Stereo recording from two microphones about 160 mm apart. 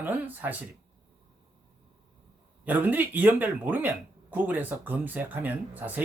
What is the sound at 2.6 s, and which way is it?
Speech, 10° right (ahead or behind).